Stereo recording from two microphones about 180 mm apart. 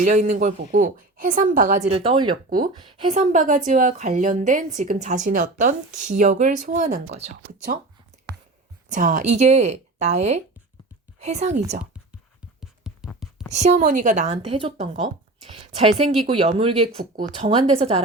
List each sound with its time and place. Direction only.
0.0 s a woman's voice: 45° right (ahead or behind)
3.1 s a woman's voice: 45° right (ahead or behind)
8.9 s speech: 45° right (ahead or behind)
12.5 s a sound: 5° right (ahead or behind)
13.5 s speech: 40° right (ahead or behind)